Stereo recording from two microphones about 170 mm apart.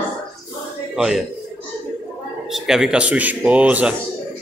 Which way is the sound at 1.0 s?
Centre (ahead or behind).